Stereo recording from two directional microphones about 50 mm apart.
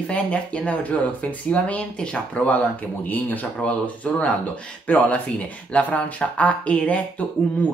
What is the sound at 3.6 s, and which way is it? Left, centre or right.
Speech, left.